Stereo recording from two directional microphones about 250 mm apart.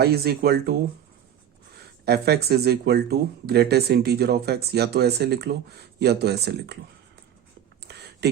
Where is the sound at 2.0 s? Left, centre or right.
Right.